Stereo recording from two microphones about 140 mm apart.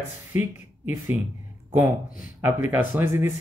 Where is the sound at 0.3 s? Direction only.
15° right (ahead or behind).